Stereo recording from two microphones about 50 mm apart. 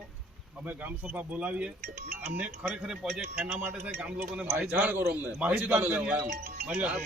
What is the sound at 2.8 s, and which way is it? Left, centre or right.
Speech, centre.